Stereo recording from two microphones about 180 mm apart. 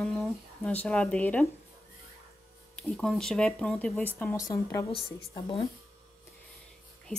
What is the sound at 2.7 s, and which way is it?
Speech, 5° left (ahead or behind).